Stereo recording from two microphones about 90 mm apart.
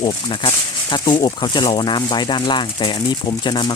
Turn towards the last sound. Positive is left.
turn(degrees=55)  # may be behind; listen again after turning